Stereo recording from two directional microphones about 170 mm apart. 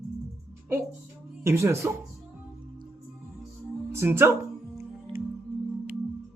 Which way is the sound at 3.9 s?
15° right (ahead or behind).